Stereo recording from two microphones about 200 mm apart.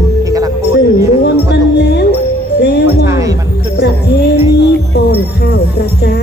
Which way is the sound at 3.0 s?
15° right (ahead or behind).